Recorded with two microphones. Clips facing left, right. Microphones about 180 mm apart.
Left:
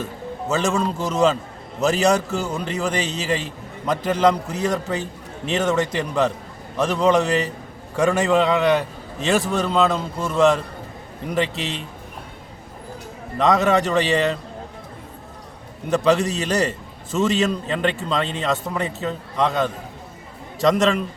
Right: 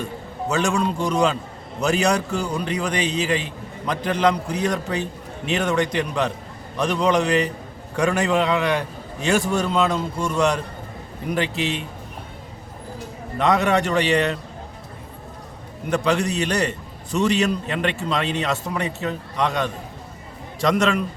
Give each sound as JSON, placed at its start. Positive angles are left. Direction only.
{"t": 0.0, "sound": "a man's voice", "side_deg": 5}
{"t": 13.4, "sound": "a man's voice", "side_deg": 0}
{"t": 15.9, "sound": "a man's voice", "side_deg": 0}